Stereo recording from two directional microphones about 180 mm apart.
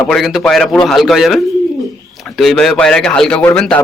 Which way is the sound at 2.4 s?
Centre (ahead or behind).